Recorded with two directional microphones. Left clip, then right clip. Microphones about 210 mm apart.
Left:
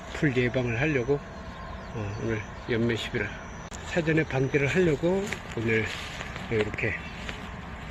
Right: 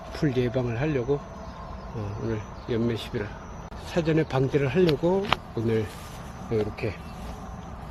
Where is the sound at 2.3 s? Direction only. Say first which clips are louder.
Left 1 dB; 10° right (ahead or behind).